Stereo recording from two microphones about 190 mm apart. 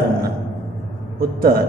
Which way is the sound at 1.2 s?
50° right (ahead or behind).